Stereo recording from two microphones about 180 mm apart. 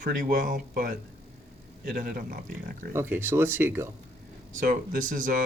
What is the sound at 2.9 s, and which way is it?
Speech, 10° right (ahead or behind).